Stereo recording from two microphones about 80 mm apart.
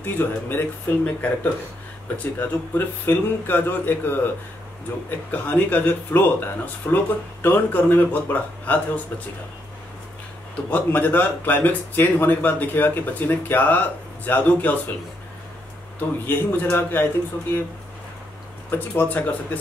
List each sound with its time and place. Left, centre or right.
0.0 s speech: left
10.7 s speech: left
16.0 s speech: left
18.7 s speech: left